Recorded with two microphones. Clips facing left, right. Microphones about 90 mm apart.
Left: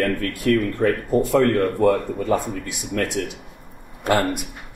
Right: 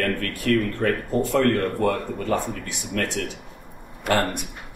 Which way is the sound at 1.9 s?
10° left (ahead or behind).